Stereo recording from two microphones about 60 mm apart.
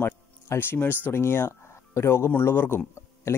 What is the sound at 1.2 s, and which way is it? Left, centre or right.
Speech, left.